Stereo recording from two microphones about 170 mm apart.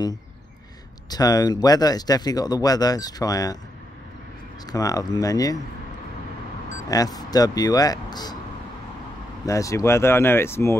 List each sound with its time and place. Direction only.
1.1 s speech: 20° left (ahead or behind)
4.6 s speech: 20° left (ahead or behind)
6.9 s speech: 20° left (ahead or behind)
9.5 s speech: 20° left (ahead or behind)